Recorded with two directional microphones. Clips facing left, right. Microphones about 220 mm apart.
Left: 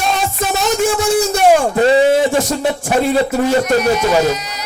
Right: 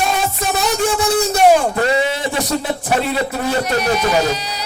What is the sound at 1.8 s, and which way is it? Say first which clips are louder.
Speech: left 6 dB; 30° left (ahead or behind).